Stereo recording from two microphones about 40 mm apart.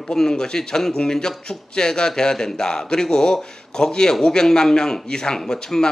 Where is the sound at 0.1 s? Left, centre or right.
Centre.